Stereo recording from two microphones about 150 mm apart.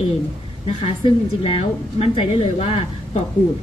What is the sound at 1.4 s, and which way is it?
A woman's voice, 40° left (ahead or behind).